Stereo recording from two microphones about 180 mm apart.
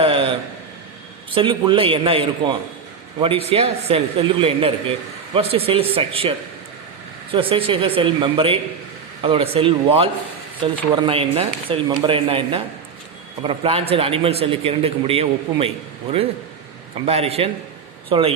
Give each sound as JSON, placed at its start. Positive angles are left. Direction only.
{"t": 0.0, "sound": "a sound", "side_deg": -30}
{"t": 1.3, "sound": "a man's voice", "side_deg": -30}
{"t": 17.1, "sound": "a man's voice", "side_deg": -35}